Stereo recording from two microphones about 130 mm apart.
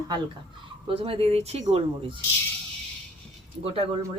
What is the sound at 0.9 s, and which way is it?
Speech, 45° right (ahead or behind).